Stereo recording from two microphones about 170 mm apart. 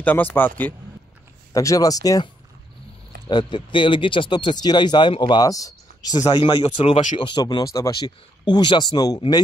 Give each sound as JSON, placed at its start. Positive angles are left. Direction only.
{"t": 0.0, "sound": "speech", "side_deg": 10}
{"t": 1.5, "sound": "speech", "side_deg": 20}
{"t": 3.3, "sound": "speech", "side_deg": 25}